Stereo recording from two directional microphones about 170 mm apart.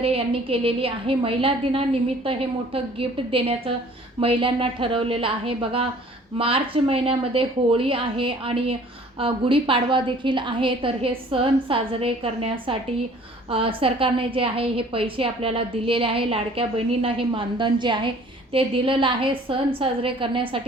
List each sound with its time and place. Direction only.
0.0 s a woman's voice: 35° right (ahead or behind)